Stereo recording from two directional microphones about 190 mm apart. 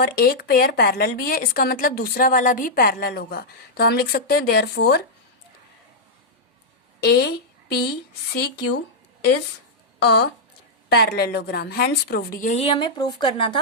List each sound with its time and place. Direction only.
0.0 s speech: 55° left (ahead or behind)
7.0 s a sound: 55° left (ahead or behind)
8.3 s speech: 60° left (ahead or behind)
10.0 s speech: 60° left (ahead or behind); by 13.6 s 25° left (ahead or behind)